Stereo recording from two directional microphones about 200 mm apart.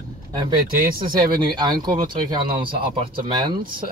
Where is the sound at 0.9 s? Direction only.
25° right (ahead or behind).